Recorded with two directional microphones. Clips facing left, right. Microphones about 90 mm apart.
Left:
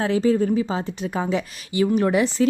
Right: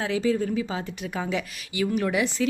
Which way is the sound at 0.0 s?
40° left (ahead or behind).